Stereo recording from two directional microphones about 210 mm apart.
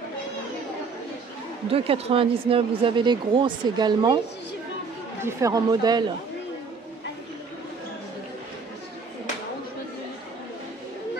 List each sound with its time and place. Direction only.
1.7 s speech: 25° right (ahead or behind)
5.2 s speech: 15° right (ahead or behind)